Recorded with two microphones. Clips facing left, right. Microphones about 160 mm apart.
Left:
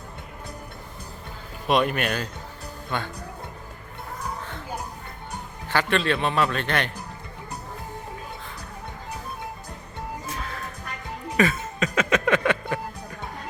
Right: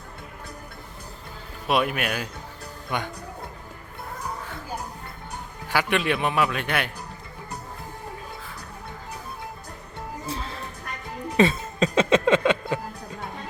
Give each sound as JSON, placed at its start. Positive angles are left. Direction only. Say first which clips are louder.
{"t": 1.6, "sound": "a man's voice", "louder": "left 2 dB", "side_deg": -5}
{"t": 5.6, "sound": "a man's voice", "louder": "even", "side_deg": -10}
{"t": 10.2, "sound": "music", "louder": "right 1 dB", "side_deg": -30}